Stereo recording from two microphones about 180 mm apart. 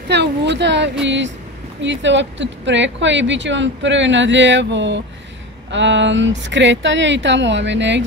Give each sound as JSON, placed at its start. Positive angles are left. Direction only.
{"t": 0.1, "sound": "speech", "side_deg": -70}